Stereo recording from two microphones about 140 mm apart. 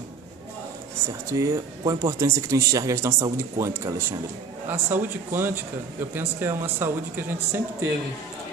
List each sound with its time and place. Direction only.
1.3 s speech: 25° right (ahead or behind)